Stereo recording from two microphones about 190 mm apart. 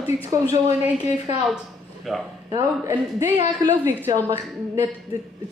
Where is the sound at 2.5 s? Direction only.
15° right (ahead or behind).